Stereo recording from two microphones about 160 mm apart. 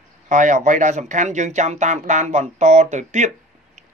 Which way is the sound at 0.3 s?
50° right (ahead or behind).